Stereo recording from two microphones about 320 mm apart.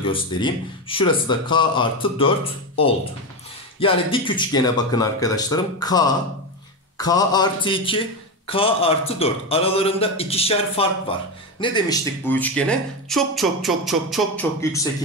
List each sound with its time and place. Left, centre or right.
0.0 s a man's voice: centre